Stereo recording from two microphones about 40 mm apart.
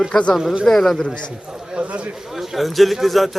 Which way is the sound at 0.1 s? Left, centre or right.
Left.